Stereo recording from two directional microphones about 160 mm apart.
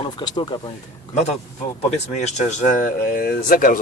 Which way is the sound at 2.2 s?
45° left (ahead or behind).